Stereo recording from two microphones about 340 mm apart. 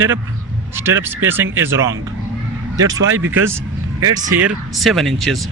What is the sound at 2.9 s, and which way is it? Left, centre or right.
Speech, right.